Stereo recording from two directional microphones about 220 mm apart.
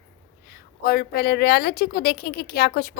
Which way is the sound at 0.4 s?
40° left (ahead or behind).